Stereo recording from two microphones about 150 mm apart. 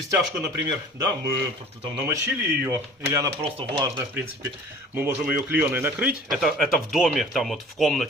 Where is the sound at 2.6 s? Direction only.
10° right (ahead or behind).